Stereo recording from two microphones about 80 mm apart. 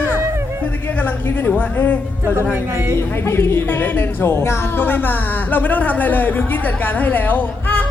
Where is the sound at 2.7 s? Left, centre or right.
Right.